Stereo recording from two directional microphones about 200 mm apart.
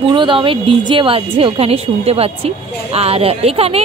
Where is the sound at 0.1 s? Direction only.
25° right (ahead or behind).